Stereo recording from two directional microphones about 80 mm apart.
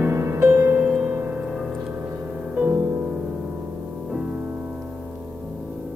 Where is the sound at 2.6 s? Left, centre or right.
Right.